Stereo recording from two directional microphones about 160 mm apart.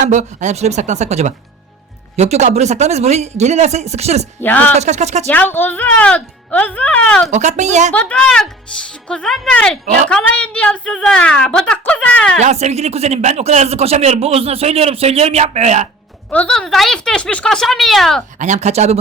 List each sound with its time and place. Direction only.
0.0 s speech: 50° right (ahead or behind)
4.4 s speech: 10° left (ahead or behind)
4.8 s speech: 45° right (ahead or behind)
5.3 s speech: 10° left (ahead or behind)
7.3 s speech: 50° right (ahead or behind)
7.9 s speech: 5° left (ahead or behind)
12.4 s speech: 45° right (ahead or behind)
16.3 s speech: 5° left (ahead or behind)
18.3 s speech: 50° right (ahead or behind)